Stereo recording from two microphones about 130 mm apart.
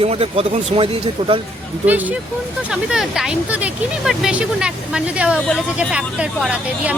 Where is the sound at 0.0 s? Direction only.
50° right (ahead or behind).